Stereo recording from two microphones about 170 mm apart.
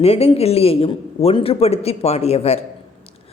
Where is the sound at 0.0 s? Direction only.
35° left (ahead or behind).